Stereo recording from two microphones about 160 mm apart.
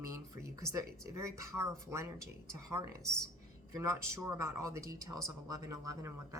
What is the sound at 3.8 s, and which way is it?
Speech, 20° right (ahead or behind).